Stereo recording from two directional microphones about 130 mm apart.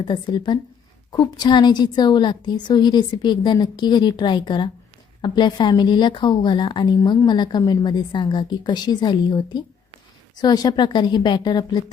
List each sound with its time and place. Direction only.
0.0 s a woman's voice: 35° left (ahead or behind)